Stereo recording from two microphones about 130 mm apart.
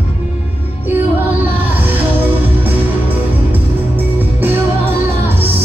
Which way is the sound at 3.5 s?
15° right (ahead or behind).